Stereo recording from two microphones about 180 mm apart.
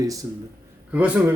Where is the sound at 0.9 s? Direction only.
10° right (ahead or behind).